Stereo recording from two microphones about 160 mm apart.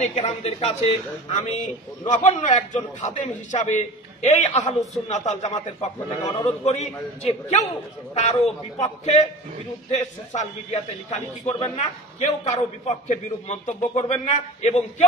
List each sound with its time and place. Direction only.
0.0 s a man's voice: 45° left (ahead or behind)